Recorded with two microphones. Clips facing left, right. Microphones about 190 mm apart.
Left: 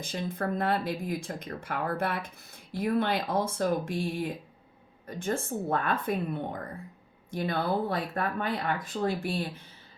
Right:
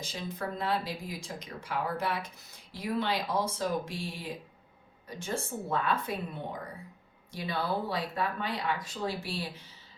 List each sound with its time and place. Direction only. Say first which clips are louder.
0.0 s speech: left 4 dB; 55° left (ahead or behind)